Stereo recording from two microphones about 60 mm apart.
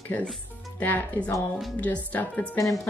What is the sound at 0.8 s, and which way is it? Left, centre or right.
A woman's voice, left.